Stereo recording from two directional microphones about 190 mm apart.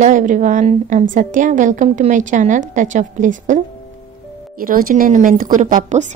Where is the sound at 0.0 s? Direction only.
40° right (ahead or behind).